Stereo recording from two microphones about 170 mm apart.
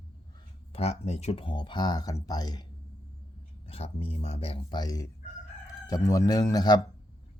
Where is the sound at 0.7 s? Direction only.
40° left (ahead or behind).